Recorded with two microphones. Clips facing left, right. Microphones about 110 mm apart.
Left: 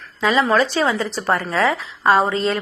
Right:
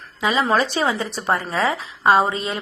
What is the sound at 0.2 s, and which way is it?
A woman's voice, 20° right (ahead or behind).